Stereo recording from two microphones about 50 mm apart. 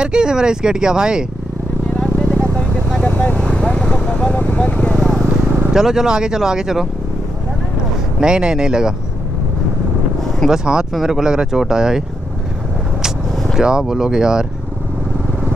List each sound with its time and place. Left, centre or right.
0.0 s speech: centre
2.0 s vehicle: centre
3.1 s vehicle: left
3.3 s vehicle: centre
4.4 s vehicle: left
4.9 s vehicle: centre
5.7 s speech: centre
8.2 s speech: centre
10.5 s speech: centre
13.6 s speech: centre